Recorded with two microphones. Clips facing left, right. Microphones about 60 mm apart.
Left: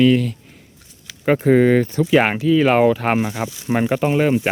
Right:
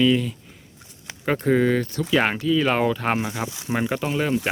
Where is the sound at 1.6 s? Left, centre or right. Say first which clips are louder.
Left 6 dB; left.